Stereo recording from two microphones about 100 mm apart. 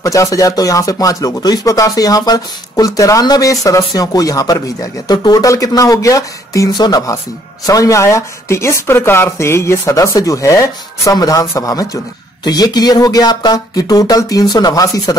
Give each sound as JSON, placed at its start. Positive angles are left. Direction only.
{"t": 0.0, "sound": "speech", "side_deg": 35}